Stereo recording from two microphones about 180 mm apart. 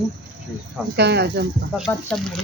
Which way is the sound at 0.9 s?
70° right (ahead or behind).